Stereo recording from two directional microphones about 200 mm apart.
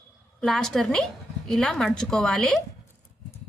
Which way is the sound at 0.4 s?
Centre (ahead or behind).